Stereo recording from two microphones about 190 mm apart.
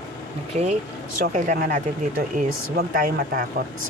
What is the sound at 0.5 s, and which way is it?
Speech, 35° right (ahead or behind).